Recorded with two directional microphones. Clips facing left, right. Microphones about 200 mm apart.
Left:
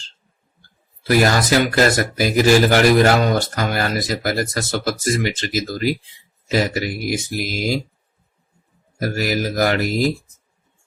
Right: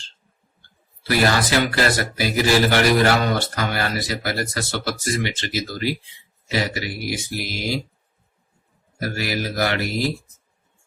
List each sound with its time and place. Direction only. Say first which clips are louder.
1.0 s speech: left 3 dB; 45° left (ahead or behind)
9.0 s speech: left 4 dB; 45° left (ahead or behind)